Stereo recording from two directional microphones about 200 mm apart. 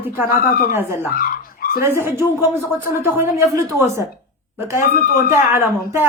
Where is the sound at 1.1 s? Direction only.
45° left (ahead or behind).